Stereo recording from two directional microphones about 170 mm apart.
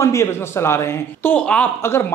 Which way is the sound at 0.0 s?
15° left (ahead or behind).